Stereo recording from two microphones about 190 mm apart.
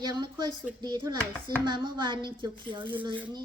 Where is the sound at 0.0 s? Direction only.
20° right (ahead or behind).